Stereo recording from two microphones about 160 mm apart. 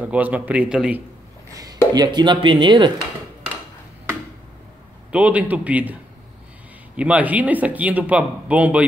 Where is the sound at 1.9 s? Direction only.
25° right (ahead or behind).